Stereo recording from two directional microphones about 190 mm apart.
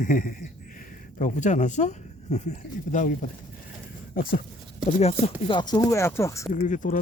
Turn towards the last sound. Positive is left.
turn(degrees=40)  # may be behind; listen again after turning